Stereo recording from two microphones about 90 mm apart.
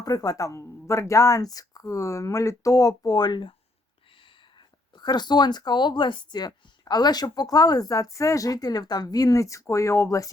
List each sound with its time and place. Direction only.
0.0 s speech: 45° left (ahead or behind)
4.5 s speech: 55° left (ahead or behind); by 10.3 s 35° left (ahead or behind)